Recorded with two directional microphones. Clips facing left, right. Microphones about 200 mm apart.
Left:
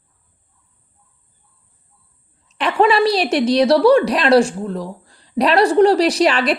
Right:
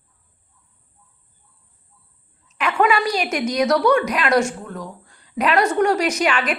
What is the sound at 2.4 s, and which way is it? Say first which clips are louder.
A woman's voice: left 3 dB; 35° left (ahead or behind).